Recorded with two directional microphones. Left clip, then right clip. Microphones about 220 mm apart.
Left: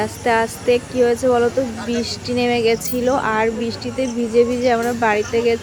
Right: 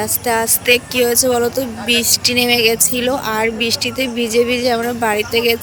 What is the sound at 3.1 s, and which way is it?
Speech, centre (ahead or behind).